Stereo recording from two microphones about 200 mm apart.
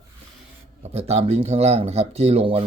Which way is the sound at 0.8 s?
30° right (ahead or behind).